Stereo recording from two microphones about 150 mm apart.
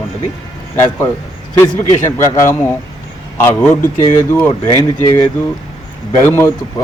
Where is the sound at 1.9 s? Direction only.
20° left (ahead or behind).